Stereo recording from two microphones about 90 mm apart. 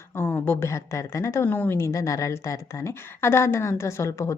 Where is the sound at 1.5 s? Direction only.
20° left (ahead or behind).